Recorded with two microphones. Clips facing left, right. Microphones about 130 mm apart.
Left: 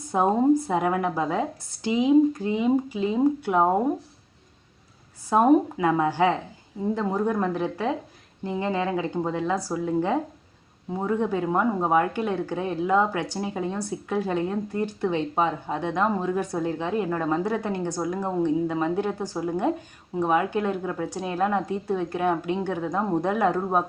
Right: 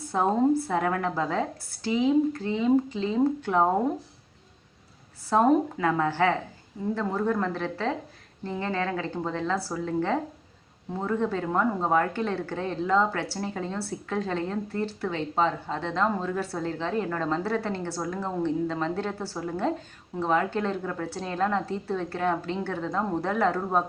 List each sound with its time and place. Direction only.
0.1 s speech: 15° left (ahead or behind)
5.3 s speech: 15° left (ahead or behind)